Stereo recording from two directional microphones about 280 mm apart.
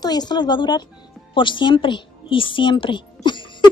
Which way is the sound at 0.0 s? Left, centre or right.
Centre.